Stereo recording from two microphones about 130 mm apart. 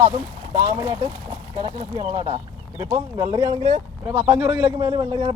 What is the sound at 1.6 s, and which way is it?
Speech, 50° right (ahead or behind).